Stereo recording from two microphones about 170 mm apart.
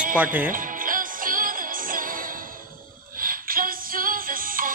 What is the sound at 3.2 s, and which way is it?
Music, 55° right (ahead or behind).